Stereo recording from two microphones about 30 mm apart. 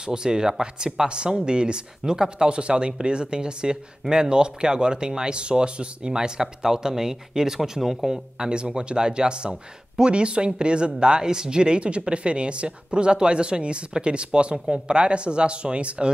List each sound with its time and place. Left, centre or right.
0.0 s speech: right
8.5 s speech: right